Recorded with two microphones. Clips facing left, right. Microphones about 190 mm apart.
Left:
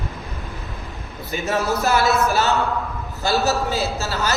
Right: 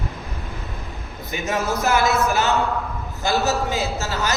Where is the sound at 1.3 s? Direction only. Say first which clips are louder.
Left 2 dB; 15° right (ahead or behind).